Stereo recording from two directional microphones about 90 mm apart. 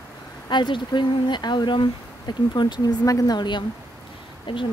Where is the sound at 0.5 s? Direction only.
55° left (ahead or behind).